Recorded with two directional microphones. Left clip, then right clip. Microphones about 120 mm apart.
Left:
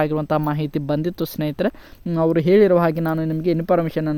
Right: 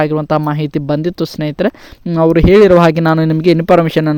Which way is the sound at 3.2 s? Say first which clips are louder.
Right 10 dB; 75° right (ahead or behind).